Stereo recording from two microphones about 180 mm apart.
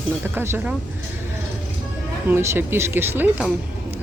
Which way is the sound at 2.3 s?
10° right (ahead or behind).